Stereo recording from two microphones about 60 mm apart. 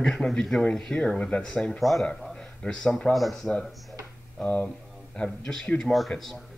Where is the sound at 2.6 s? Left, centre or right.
Centre.